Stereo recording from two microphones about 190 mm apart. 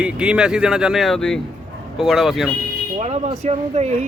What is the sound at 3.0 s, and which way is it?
Speech, 35° right (ahead or behind).